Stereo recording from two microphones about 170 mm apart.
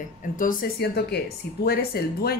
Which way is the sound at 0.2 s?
50° left (ahead or behind).